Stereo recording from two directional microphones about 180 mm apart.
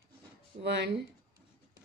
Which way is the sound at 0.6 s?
75° right (ahead or behind).